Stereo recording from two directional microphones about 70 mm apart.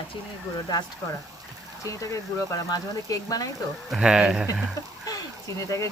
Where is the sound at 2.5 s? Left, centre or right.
Left.